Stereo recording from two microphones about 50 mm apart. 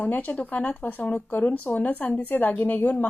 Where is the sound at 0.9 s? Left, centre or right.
Left.